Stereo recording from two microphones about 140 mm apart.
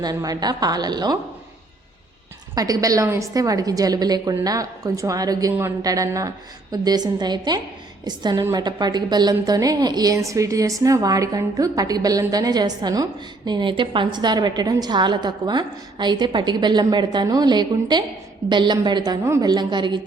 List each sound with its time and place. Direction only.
0.0 s a woman's voice: 25° right (ahead or behind)
2.6 s a woman's voice: 25° right (ahead or behind)